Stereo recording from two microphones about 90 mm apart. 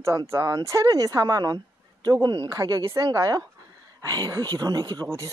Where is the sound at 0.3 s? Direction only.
35° right (ahead or behind); by 2.5 s 55° right (ahead or behind).